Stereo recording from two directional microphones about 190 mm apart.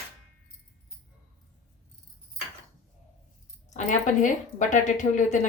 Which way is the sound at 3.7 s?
40° left (ahead or behind).